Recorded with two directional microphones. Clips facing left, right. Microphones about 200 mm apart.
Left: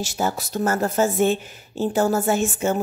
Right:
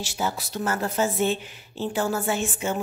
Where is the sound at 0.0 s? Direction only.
45° left (ahead or behind).